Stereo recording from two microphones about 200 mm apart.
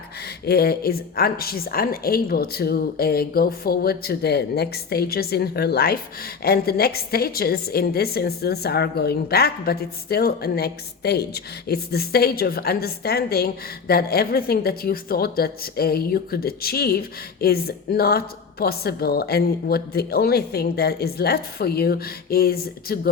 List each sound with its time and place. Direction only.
0.4 s a woman's voice: 50° left (ahead or behind)